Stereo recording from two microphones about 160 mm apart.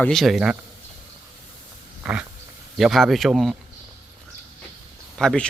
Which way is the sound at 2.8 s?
Centre (ahead or behind).